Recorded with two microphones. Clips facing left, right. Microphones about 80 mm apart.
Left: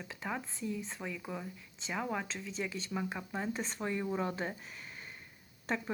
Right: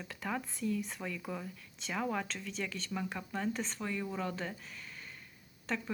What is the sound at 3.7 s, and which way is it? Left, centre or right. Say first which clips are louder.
Speech: left 3 dB; left.